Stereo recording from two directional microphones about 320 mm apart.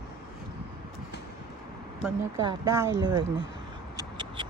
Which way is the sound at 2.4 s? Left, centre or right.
Centre.